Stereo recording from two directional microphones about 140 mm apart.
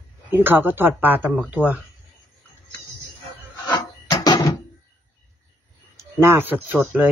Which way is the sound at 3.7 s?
25° left (ahead or behind).